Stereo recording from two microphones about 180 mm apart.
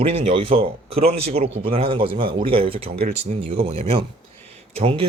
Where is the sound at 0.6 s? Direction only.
35° right (ahead or behind).